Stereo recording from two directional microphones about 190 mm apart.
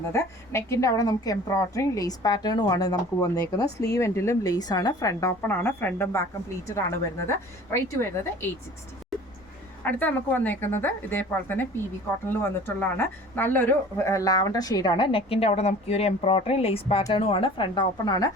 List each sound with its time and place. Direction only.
0.1 s a woman's voice: 15° left (ahead or behind)
7.3 s a woman's voice: 15° left (ahead or behind)
9.8 s a woman's voice: 10° left (ahead or behind)